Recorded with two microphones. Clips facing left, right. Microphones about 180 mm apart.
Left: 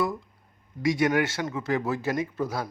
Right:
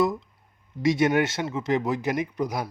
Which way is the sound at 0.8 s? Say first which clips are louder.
Right 2 dB; 25° right (ahead or behind).